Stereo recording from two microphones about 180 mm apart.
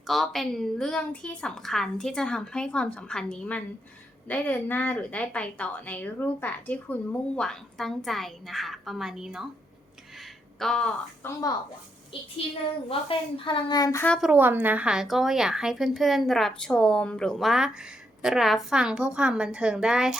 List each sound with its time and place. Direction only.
0.1 s a woman's voice: centre (ahead or behind)
10.6 s a woman's voice: 5° left (ahead or behind)
11.3 s a woman's voice: 20° left (ahead or behind)
12.9 s a woman's voice: 30° left (ahead or behind)
14.0 s a woman's voice: centre (ahead or behind)